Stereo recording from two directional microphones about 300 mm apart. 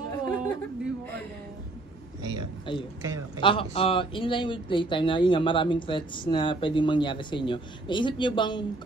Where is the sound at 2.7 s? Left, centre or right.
Centre.